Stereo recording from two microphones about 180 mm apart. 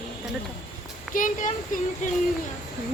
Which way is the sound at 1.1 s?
45° left (ahead or behind).